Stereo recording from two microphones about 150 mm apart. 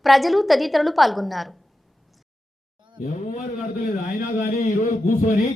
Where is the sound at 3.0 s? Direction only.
55° left (ahead or behind).